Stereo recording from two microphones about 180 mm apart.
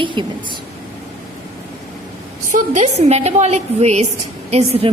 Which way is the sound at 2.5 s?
45° right (ahead or behind).